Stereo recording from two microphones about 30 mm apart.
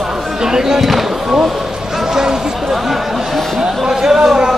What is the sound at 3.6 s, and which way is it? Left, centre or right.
Speech, centre.